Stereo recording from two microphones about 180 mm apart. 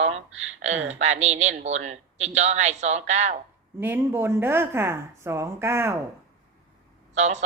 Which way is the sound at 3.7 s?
10° right (ahead or behind).